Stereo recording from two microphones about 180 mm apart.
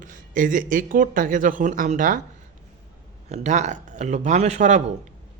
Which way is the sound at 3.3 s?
40° right (ahead or behind).